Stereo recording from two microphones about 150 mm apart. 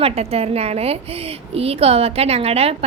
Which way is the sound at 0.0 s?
40° right (ahead or behind).